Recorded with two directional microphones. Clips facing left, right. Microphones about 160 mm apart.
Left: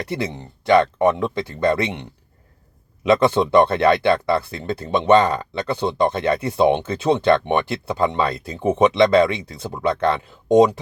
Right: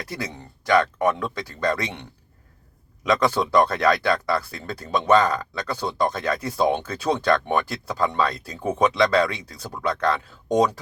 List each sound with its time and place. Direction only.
0.1 s speech: 25° left (ahead or behind)
3.0 s speech: 25° left (ahead or behind)